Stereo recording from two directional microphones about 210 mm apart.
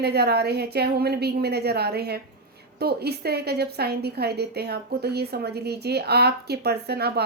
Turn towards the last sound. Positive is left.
turn(degrees=-50)  # may be behind; listen again after turning